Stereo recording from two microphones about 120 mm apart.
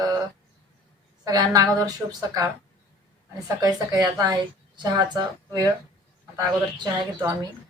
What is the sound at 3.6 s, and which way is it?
Speech, 30° right (ahead or behind).